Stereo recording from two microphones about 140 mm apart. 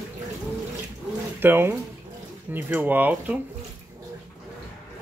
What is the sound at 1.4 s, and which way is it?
Speech, 15° right (ahead or behind).